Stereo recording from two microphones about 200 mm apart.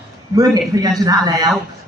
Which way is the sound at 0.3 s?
20° right (ahead or behind).